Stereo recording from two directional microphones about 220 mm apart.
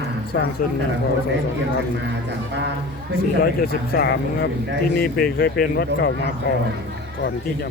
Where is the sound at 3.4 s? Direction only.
45° left (ahead or behind).